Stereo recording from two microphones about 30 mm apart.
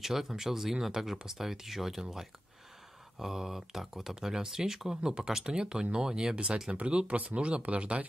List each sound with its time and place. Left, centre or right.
0.0 s speech: centre
3.2 s speech: centre
5.5 s speech: right
6.3 s speech: right